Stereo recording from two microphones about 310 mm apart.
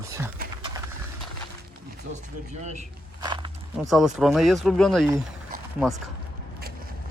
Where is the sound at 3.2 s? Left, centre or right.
Centre.